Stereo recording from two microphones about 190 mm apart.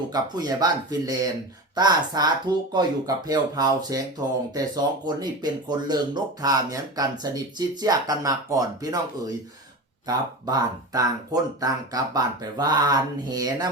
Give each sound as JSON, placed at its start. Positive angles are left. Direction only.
{"t": 0.1, "sound": "speech", "side_deg": -20}